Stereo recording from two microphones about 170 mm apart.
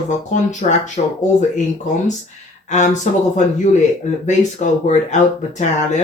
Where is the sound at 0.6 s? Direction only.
40° left (ahead or behind).